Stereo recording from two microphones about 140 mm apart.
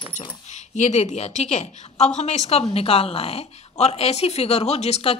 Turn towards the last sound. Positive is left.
turn(degrees=50)  # may be behind; listen again after turning